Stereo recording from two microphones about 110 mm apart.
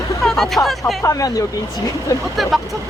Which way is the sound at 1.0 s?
30° left (ahead or behind).